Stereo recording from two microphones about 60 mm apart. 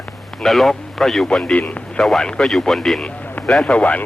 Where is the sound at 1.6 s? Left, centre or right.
Left.